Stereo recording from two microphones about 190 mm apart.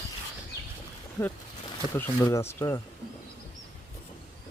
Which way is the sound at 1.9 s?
10° left (ahead or behind).